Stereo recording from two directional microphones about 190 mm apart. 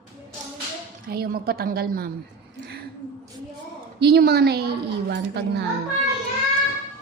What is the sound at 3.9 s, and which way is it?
A woman's voice, 55° right (ahead or behind).